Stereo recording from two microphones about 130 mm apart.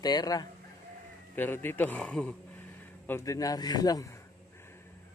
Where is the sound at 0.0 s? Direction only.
30° left (ahead or behind).